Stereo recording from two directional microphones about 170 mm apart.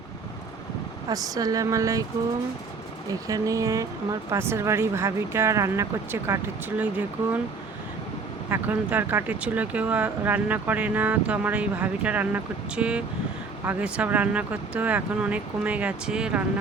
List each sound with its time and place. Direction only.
1.0 s speech: 20° right (ahead or behind)
3.1 s speech: 20° right (ahead or behind)
8.4 s speech: 10° right (ahead or behind)